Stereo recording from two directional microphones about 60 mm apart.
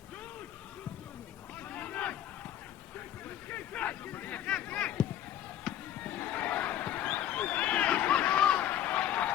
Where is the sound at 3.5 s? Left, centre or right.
Left.